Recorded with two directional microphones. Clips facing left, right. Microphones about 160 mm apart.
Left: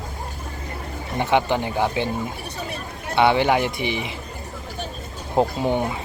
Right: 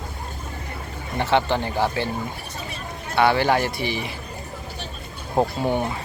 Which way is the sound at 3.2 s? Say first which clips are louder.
Left 1 dB; 20° left (ahead or behind).